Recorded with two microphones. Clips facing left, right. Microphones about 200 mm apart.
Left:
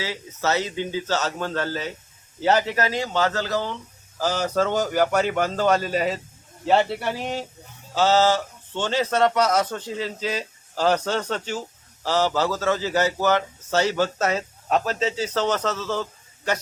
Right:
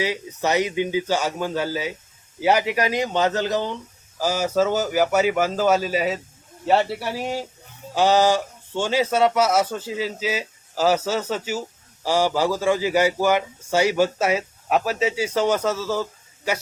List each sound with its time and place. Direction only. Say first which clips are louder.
0.0 s a man's voice: right 3 dB; 15° right (ahead or behind)